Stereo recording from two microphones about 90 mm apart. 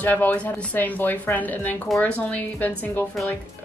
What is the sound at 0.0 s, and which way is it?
A woman's voice, 20° left (ahead or behind).